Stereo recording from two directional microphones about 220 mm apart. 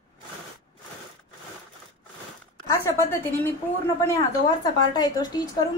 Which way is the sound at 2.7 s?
15° left (ahead or behind).